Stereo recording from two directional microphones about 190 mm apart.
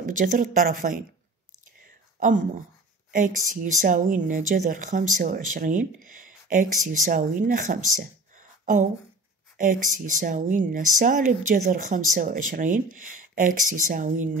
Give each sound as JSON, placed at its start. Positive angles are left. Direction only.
{"t": 0.0, "sound": "speech", "side_deg": -45}
{"t": 2.1, "sound": "speech", "side_deg": -45}